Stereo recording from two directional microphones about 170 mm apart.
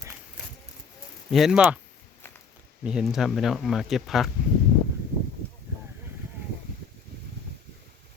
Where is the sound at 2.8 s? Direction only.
5° right (ahead or behind).